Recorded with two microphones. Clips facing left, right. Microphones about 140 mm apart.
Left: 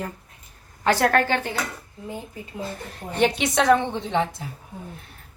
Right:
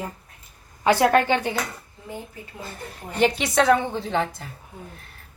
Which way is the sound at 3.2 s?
Centre (ahead or behind).